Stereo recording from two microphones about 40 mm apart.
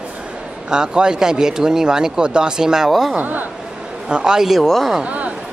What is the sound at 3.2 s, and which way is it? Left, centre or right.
Speech, right.